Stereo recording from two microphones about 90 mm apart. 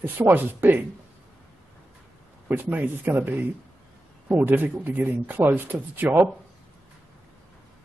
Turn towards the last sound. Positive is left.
turn(degrees=-20)  # may be behind; listen again after turning